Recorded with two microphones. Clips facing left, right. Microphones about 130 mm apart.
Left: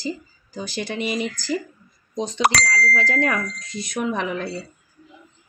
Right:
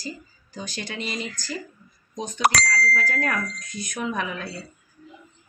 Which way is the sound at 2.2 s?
90° left.